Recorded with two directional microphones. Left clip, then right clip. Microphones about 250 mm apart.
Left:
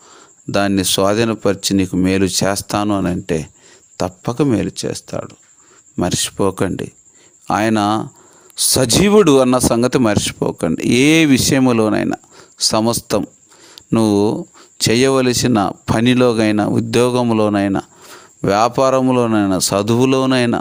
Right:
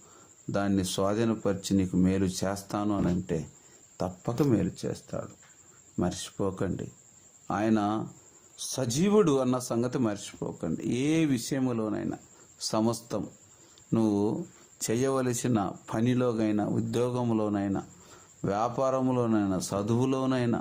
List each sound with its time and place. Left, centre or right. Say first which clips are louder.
0.5 s speech: left 14 dB; left
13.7 s a sound: left 13 dB; left
14.9 s speech: left 14 dB; left